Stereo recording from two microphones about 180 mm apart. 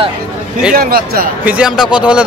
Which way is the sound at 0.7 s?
55° right (ahead or behind).